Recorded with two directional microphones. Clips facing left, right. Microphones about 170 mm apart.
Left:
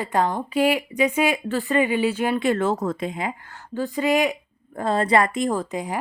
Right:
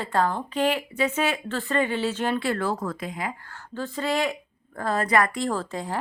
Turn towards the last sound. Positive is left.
turn(degrees=15)  # may be behind; listen again after turning